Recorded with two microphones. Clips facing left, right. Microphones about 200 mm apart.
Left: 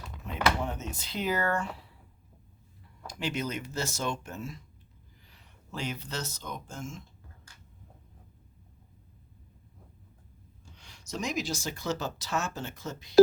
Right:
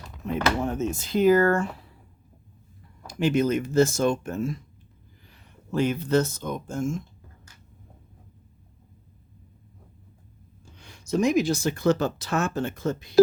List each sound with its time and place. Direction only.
0.6 s speech: 50° right (ahead or behind)
3.1 s speech: 50° right (ahead or behind)
10.8 s speech: 55° right (ahead or behind)